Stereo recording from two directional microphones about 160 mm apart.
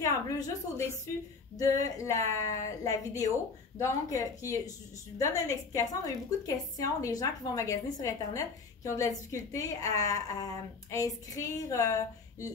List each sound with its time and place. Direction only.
0.0 s a woman's voice: 20° left (ahead or behind)